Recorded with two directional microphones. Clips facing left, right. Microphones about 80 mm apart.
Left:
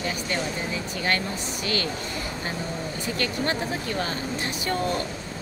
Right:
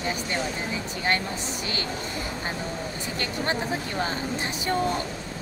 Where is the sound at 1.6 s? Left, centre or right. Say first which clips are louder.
Left 7 dB; right.